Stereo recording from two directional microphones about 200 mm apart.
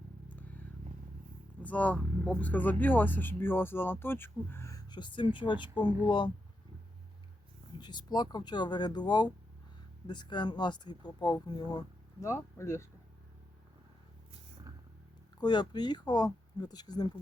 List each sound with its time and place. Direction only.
0.3 s vehicle: 10° left (ahead or behind)
1.6 s speech: 5° left (ahead or behind); by 6.3 s 20° left (ahead or behind)
7.8 s speech: 20° left (ahead or behind)
15.4 s speech: 20° left (ahead or behind)